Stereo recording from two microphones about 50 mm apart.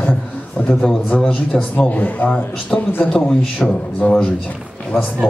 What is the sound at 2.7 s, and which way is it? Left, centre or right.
A man's voice, centre.